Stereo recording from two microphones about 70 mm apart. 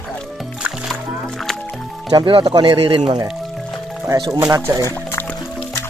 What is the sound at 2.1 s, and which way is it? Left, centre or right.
Speech, right.